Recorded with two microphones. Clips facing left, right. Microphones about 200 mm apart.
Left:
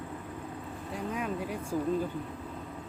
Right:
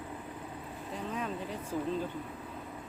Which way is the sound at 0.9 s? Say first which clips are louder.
Left 3 dB; 10° left (ahead or behind).